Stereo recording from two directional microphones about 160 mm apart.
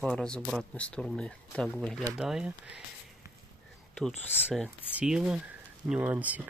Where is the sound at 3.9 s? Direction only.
Centre (ahead or behind).